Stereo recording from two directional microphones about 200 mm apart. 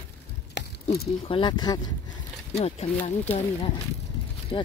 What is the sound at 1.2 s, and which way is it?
Speech, 25° left (ahead or behind).